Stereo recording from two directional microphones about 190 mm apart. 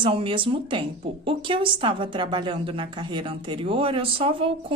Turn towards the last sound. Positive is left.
turn(degrees=-30)  # may be behind; listen again after turning